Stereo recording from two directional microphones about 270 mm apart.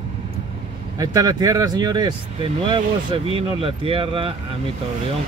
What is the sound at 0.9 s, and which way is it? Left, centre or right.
Speech, centre.